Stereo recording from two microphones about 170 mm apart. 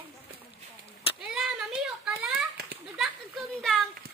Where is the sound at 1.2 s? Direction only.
5° right (ahead or behind).